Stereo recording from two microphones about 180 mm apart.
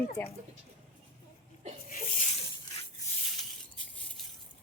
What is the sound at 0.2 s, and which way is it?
Speech, 10° left (ahead or behind).